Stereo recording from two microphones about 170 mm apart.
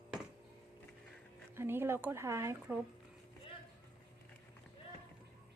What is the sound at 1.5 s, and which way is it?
Speech, 15° right (ahead or behind).